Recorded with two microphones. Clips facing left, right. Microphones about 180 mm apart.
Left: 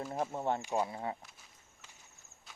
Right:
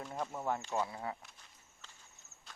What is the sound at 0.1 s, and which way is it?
Speech, 25° left (ahead or behind).